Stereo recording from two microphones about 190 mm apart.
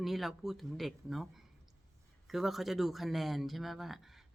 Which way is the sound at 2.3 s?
Centre (ahead or behind).